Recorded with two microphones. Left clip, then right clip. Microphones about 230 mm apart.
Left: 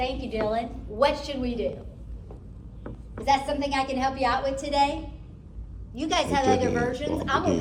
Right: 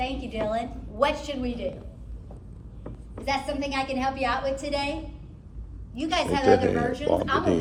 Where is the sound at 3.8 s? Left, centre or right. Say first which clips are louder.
Left 1 dB; left.